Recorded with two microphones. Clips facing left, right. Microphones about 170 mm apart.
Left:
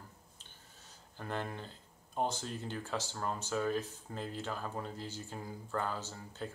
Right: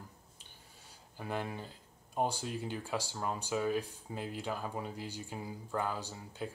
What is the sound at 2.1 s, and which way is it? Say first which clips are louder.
Speech: right 2 dB; 10° right (ahead or behind).